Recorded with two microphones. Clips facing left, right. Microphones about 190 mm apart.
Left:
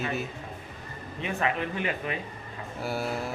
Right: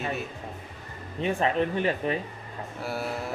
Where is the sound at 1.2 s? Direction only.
35° right (ahead or behind).